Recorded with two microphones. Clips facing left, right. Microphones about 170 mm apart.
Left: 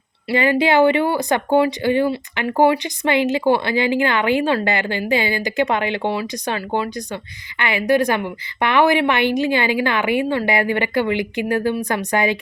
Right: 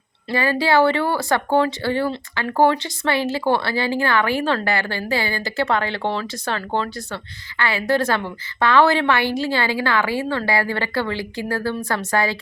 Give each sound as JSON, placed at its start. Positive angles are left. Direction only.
{"t": 0.3, "sound": "speech", "side_deg": 20}